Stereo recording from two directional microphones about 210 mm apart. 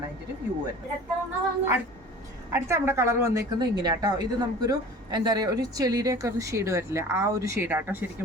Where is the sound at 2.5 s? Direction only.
10° right (ahead or behind).